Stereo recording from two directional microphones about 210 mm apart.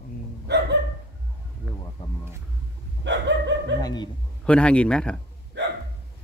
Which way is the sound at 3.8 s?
20° left (ahead or behind).